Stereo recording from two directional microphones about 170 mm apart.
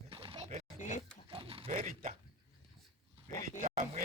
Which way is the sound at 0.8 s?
45° left (ahead or behind).